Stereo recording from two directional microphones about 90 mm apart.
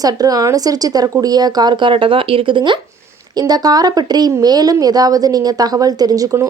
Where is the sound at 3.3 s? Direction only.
45° right (ahead or behind).